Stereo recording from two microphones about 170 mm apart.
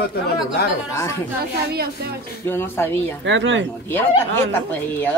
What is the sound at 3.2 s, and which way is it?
Speech, 90° right.